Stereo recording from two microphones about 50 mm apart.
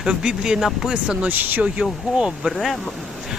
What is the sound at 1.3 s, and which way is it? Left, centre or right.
Speech, right.